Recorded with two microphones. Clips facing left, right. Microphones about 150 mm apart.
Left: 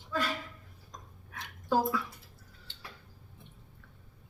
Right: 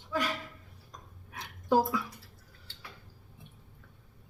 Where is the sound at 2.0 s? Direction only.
20° left (ahead or behind).